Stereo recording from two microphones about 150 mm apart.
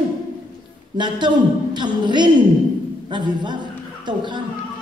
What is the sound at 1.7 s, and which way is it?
A woman's voice, 30° right (ahead or behind).